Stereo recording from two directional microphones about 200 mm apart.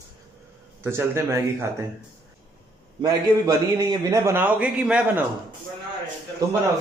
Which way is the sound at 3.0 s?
20° right (ahead or behind).